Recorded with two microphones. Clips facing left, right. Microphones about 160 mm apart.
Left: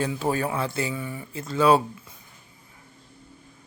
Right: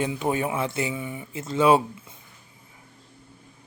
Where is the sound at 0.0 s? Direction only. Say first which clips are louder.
Even; 20° right (ahead or behind).